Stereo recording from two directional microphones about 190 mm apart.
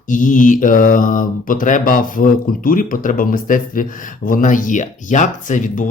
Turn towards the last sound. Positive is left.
turn(degrees=40)  # may be behind; listen again after turning